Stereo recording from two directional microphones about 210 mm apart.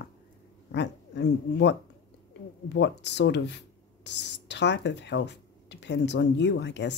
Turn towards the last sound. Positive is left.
turn(degrees=55)  # may be behind; listen again after turning